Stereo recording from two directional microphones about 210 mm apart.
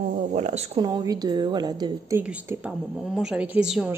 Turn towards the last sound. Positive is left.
turn(degrees=-5)  # may be behind; listen again after turning